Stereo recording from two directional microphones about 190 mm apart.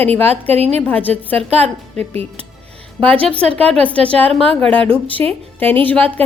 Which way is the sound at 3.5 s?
30° right (ahead or behind).